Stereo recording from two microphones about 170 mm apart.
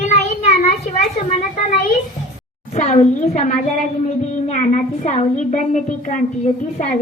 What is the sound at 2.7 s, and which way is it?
A woman's voice, 40° left (ahead or behind).